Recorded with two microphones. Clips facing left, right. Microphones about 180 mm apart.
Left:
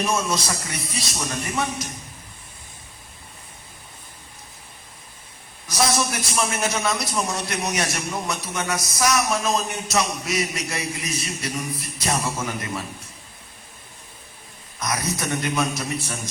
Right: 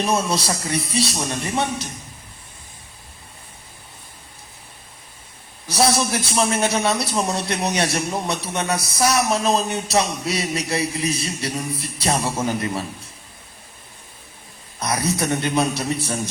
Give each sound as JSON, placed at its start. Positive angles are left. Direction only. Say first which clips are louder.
{"t": 0.0, "sound": "a man's voice", "louder": "right 3 dB", "side_deg": -30}
{"t": 5.6, "sound": "a man's voice", "louder": "right 3 dB", "side_deg": -30}
{"t": 14.8, "sound": "a man's voice", "louder": "right 4 dB", "side_deg": -30}